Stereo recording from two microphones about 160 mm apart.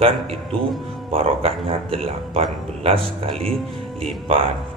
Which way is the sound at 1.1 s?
40° right (ahead or behind).